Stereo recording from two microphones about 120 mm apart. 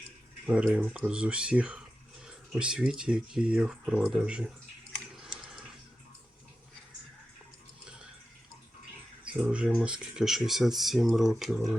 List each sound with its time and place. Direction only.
0.4 s speech: 10° right (ahead or behind)
5.1 s a sound: 5° right (ahead or behind)
9.2 s speech: 10° right (ahead or behind)